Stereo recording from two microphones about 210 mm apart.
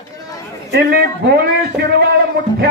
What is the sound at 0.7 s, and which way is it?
A man's voice, 50° right (ahead or behind).